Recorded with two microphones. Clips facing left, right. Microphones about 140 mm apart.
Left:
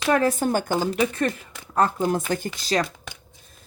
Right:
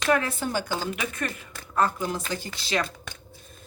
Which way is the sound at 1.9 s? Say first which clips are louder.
Left 7 dB; 50° left (ahead or behind).